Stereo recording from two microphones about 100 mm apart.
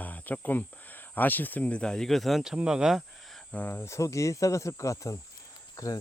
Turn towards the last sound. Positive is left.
turn(degrees=35)  # may be behind; listen again after turning